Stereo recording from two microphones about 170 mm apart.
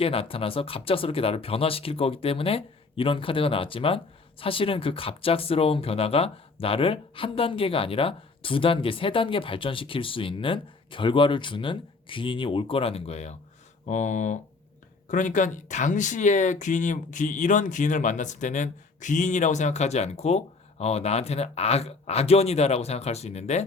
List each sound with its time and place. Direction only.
0.0 s speech: 35° left (ahead or behind)